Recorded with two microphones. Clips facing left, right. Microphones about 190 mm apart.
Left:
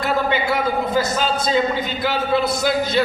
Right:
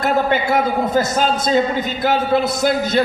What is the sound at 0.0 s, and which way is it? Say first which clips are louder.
A man's voice: right 3 dB; 50° right (ahead or behind).